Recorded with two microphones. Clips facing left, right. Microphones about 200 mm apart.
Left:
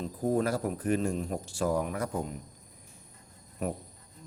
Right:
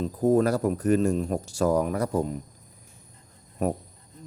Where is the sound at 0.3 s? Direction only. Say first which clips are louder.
Right 7 dB; 40° right (ahead or behind).